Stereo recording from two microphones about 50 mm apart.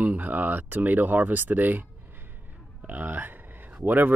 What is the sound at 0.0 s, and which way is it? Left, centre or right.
Speech, right.